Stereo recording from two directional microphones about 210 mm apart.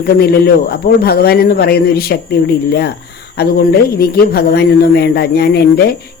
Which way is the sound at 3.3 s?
45° left (ahead or behind).